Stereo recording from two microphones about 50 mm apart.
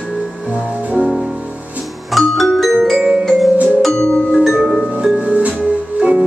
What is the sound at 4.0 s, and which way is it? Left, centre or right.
Music, centre.